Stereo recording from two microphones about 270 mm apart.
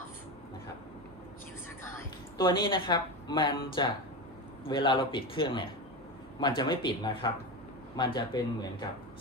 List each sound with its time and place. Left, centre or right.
2.4 s speech: centre